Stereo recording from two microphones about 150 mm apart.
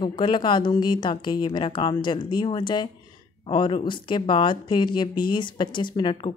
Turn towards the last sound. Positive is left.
turn(degrees=30)  # may be behind; listen again after turning